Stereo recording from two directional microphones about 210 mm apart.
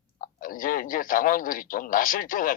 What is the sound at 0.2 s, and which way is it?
Speech, 40° left (ahead or behind).